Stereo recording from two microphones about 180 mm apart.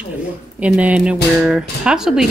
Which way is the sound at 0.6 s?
5° right (ahead or behind).